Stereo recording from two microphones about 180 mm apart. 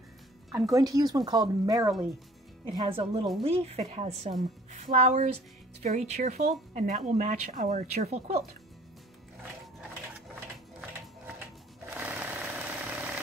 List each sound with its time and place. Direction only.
0.7 s speech: 20° right (ahead or behind); by 8.4 s 35° right (ahead or behind)
11.9 s engine: 10° right (ahead or behind)